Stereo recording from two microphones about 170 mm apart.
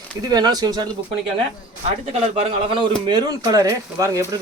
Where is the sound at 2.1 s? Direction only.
35° right (ahead or behind).